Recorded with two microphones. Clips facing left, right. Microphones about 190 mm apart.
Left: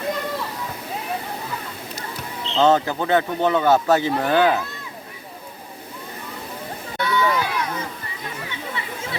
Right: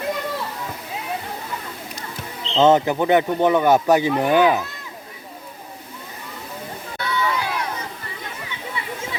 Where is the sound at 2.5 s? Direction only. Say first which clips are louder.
Right 2 dB; 20° right (ahead or behind).